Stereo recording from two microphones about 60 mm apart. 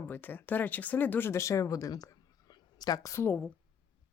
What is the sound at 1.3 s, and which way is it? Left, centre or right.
Speech, left.